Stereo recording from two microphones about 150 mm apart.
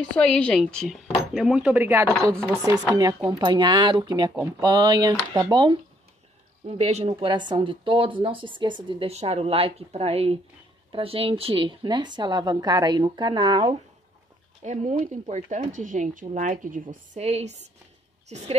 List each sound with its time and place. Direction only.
0.1 s speech: 5° left (ahead or behind); by 5.8 s 30° right (ahead or behind)
6.6 s speech: 45° right (ahead or behind)
9.1 s speech: 45° right (ahead or behind)
14.6 s speech: 50° right (ahead or behind)
17.1 s speech: 45° right (ahead or behind)